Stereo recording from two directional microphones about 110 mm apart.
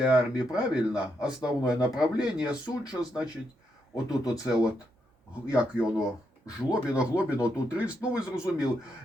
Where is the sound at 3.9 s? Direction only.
35° left (ahead or behind).